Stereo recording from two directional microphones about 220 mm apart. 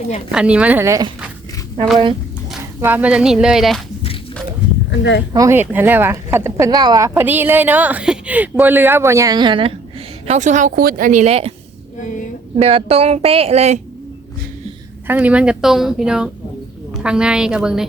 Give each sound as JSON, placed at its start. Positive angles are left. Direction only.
{"t": 0.3, "sound": "speech", "side_deg": -5}
{"t": 2.5, "sound": "speech", "side_deg": -5}
{"t": 4.9, "sound": "speech", "side_deg": 55}
{"t": 5.3, "sound": "speech", "side_deg": -15}
{"t": 10.2, "sound": "speech", "side_deg": -35}
{"t": 12.5, "sound": "a woman's voice", "side_deg": -25}
{"t": 15.0, "sound": "a woman's voice", "side_deg": -10}